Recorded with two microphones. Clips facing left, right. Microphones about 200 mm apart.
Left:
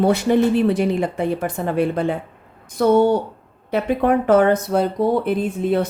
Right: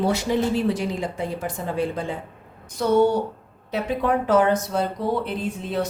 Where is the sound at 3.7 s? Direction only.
60° left (ahead or behind).